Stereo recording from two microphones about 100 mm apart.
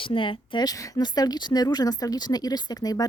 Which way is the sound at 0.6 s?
35° left (ahead or behind).